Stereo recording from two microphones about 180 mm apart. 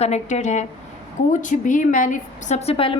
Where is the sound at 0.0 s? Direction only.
40° left (ahead or behind).